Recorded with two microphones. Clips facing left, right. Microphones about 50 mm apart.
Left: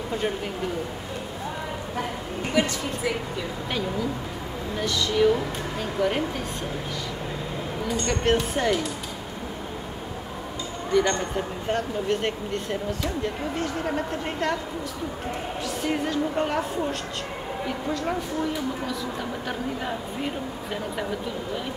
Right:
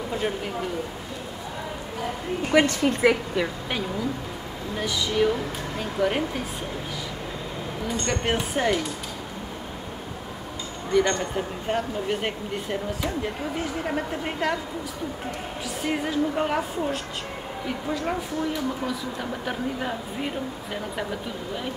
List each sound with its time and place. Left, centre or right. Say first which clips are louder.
2.8 s speech: right 7 dB; right
4.7 s speech: left 1 dB; centre
8.1 s speech: left 3 dB; centre
10.9 s speech: even; centre
15.8 s a woman's voice: right 1 dB; centre